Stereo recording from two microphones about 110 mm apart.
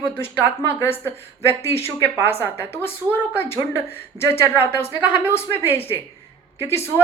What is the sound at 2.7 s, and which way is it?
Speech, 20° left (ahead or behind).